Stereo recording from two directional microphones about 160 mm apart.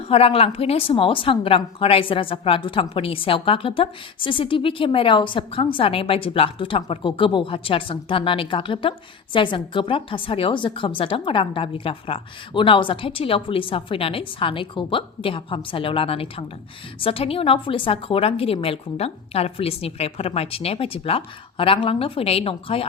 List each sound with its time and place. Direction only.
0.1 s a woman's voice: 35° left (ahead or behind)